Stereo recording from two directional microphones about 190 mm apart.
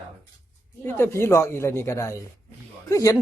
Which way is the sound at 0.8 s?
15° left (ahead or behind).